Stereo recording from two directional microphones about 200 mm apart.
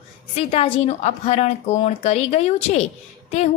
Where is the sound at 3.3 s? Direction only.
35° left (ahead or behind).